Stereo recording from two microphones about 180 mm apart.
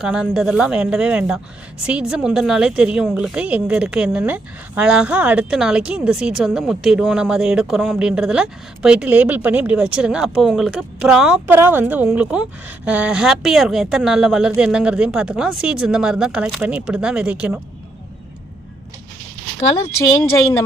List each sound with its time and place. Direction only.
0.0 s a woman's voice: 5° right (ahead or behind)